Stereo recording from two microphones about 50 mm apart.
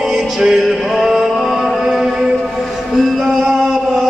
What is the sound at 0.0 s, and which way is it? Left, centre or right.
Music, centre.